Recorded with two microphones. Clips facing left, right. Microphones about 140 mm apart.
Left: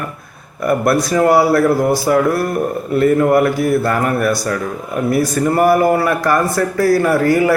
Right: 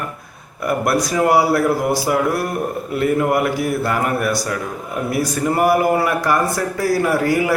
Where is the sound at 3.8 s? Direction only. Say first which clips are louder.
Left 3 dB; 15° right (ahead or behind).